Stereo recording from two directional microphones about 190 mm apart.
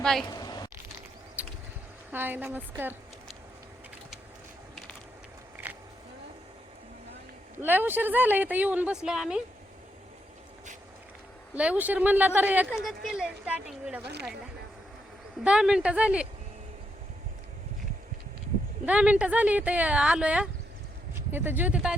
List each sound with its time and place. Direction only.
0.0 s speech: centre (ahead or behind)
0.3 s a sound: 20° left (ahead or behind)
1.4 s a sound: 5° right (ahead or behind)
2.1 s a woman's voice: 10° right (ahead or behind)
7.6 s a woman's voice: 10° right (ahead or behind)
11.5 s a woman's voice: 5° right (ahead or behind)
14.0 s speech: 60° right (ahead or behind)
15.4 s speech: 5° right (ahead or behind)
18.9 s a woman's voice: 5° right (ahead or behind)